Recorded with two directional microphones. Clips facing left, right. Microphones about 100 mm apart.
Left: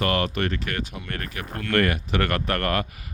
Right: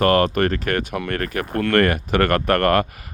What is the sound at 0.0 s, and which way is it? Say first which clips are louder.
Speech: right 8 dB; 45° right (ahead or behind).